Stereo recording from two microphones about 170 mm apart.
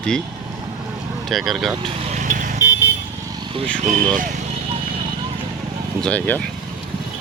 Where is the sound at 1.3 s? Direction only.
Centre (ahead or behind).